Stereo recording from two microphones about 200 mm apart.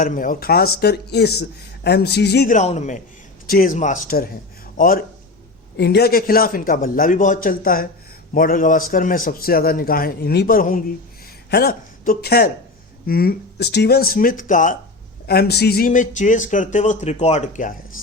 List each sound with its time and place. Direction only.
0.0 s a man's voice: 45° left (ahead or behind)
2.6 s a man's voice: 35° left (ahead or behind)
15.3 s speech: 55° left (ahead or behind)